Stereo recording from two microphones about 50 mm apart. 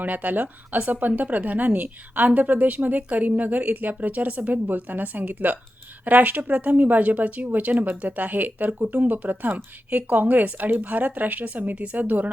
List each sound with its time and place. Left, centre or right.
0.0 s a woman's voice: right